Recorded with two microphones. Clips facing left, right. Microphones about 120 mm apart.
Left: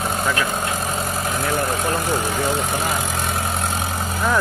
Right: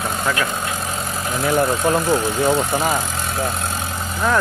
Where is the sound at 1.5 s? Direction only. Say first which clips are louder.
Right 6 dB; 15° right (ahead or behind).